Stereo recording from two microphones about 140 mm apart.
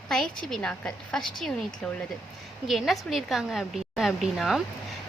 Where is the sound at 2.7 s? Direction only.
Centre (ahead or behind).